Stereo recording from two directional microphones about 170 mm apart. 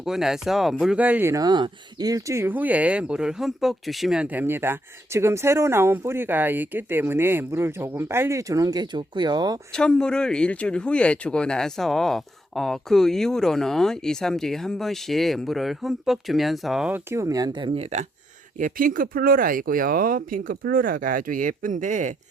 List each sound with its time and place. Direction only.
0.0 s speech: centre (ahead or behind); by 9.6 s 25° right (ahead or behind)
9.7 s speech: 5° left (ahead or behind); by 17.8 s 30° right (ahead or behind)
18.5 s speech: 50° right (ahead or behind)